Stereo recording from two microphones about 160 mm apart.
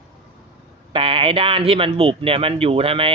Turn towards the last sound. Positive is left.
turn(degrees=-35)  # may be behind; listen again after turning